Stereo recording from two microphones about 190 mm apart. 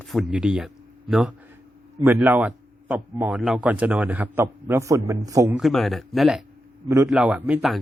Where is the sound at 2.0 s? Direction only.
10° right (ahead or behind).